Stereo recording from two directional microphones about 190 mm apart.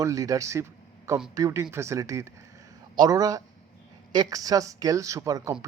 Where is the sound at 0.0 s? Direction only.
15° right (ahead or behind).